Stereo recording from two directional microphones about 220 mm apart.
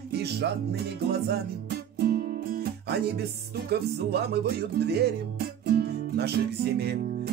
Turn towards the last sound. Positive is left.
turn(degrees=-45)  # may be behind; listen again after turning